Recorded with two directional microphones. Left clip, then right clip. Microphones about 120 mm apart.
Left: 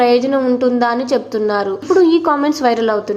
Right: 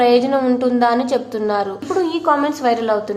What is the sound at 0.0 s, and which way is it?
Speech, 25° left (ahead or behind).